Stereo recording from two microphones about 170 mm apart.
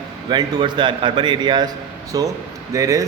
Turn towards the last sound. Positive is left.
turn(degrees=-20)  # may be behind; listen again after turning